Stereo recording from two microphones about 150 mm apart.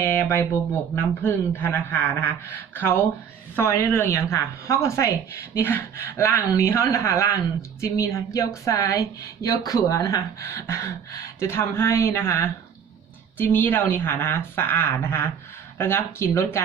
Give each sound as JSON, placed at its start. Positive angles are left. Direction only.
{"t": 0.0, "sound": "speech", "side_deg": 15}